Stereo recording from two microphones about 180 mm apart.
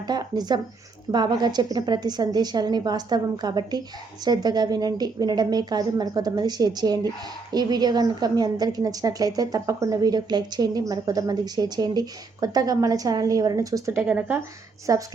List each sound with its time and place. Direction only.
0.1 s a woman's voice: 20° right (ahead or behind)